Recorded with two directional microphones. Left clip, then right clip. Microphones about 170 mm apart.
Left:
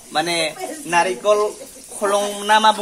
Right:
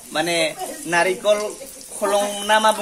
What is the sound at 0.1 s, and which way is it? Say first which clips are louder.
A man's voice: even; 15° left (ahead or behind).